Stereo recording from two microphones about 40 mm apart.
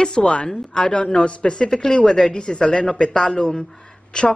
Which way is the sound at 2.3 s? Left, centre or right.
Left.